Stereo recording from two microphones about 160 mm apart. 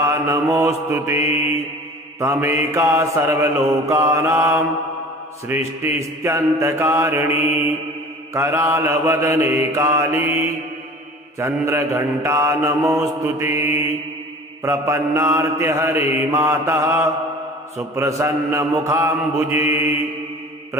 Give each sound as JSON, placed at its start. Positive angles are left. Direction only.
{"t": 0.1, "sound": "mantra", "side_deg": -20}
{"t": 1.2, "sound": "mantra", "side_deg": 40}
{"t": 2.2, "sound": "mantra", "side_deg": -15}
{"t": 5.8, "sound": "mantra", "side_deg": -15}
{"t": 11.3, "sound": "mantra", "side_deg": -15}